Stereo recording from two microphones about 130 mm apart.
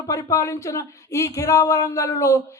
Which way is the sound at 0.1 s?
25° left (ahead or behind).